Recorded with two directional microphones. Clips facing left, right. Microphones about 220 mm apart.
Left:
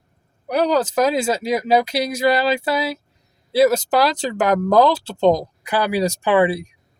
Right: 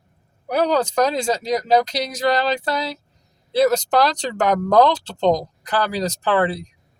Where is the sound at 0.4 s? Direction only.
Centre (ahead or behind).